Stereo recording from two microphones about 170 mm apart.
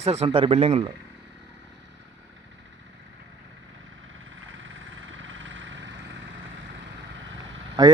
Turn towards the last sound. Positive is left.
turn(degrees=-25)  # may be behind; listen again after turning